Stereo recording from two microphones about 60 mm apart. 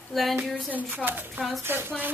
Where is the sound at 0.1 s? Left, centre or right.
Centre.